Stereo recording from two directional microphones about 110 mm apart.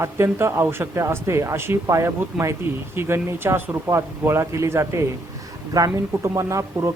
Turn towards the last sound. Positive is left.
turn(degrees=-30)  # may be behind; listen again after turning